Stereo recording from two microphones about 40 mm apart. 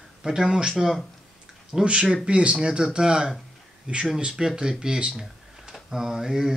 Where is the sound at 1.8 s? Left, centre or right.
Right; by 6.5 s centre.